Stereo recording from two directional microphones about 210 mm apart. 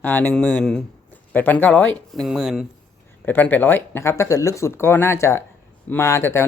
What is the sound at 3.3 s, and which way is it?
Speech, 10° left (ahead or behind).